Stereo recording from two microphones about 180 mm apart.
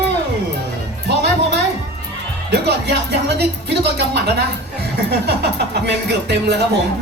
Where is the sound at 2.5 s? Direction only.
70° right (ahead or behind).